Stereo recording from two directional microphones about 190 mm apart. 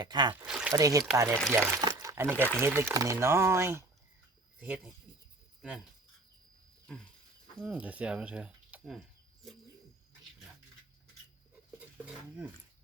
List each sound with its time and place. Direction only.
0.0 s speech: 25° right (ahead or behind)
0.4 s a sound: 5° right (ahead or behind)
0.7 s speech: 15° right (ahead or behind)
1.8 s a sound: 20° right (ahead or behind)
2.3 s speech: 5° left (ahead or behind)
2.6 s speech: 10° right (ahead or behind)
7.6 s speech: 5° right (ahead or behind)